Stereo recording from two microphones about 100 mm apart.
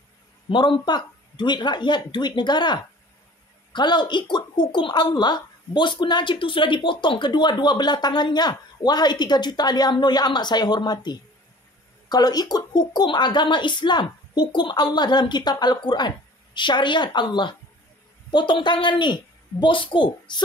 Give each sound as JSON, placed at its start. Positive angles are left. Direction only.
{"t": 0.5, "sound": "a woman's voice", "side_deg": 50}